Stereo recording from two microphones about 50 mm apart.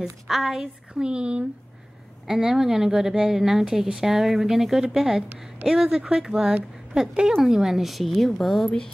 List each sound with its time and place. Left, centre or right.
0.0 s a woman's voice: centre
2.2 s a woman's voice: centre